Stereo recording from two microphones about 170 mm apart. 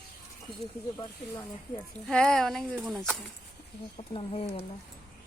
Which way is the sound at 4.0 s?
35° left (ahead or behind).